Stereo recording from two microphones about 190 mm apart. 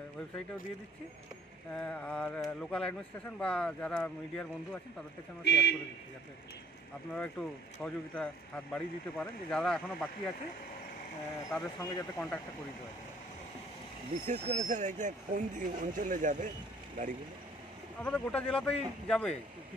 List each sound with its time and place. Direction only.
1.8 s speech: 5° left (ahead or behind)
5.4 s speech: 65° left (ahead or behind)
7.2 s speech: 5° left (ahead or behind)
11.5 s speech: 5° left (ahead or behind)
14.2 s speech: 40° right (ahead or behind)
18.0 s speech: 5° left (ahead or behind)